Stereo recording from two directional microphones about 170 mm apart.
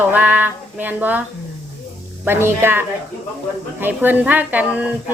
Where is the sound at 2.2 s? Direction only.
15° right (ahead or behind).